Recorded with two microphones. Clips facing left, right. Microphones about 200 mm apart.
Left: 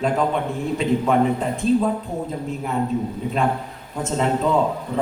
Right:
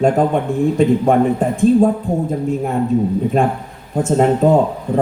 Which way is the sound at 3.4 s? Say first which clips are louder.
Right 5 dB; 45° right (ahead or behind).